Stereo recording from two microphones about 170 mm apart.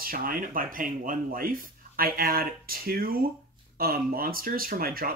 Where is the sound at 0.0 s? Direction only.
55° right (ahead or behind).